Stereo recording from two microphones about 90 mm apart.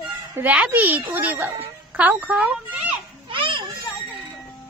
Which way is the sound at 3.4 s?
65° right (ahead or behind).